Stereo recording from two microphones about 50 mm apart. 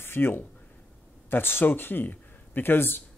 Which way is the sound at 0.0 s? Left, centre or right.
Left.